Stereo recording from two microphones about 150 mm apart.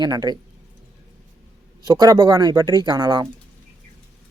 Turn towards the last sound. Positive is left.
turn(degrees=-25)  # may be behind; listen again after turning